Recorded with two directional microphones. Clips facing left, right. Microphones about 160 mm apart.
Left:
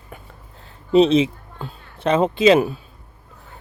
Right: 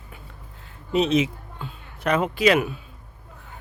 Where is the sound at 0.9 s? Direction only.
30° left (ahead or behind).